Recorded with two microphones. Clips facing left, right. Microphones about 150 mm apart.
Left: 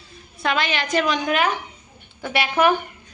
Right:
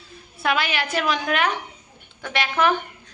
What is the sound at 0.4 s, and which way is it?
A woman's voice, 5° right (ahead or behind).